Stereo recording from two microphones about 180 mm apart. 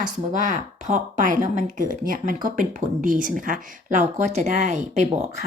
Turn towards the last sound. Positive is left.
turn(degrees=-40)  # may be behind; listen again after turning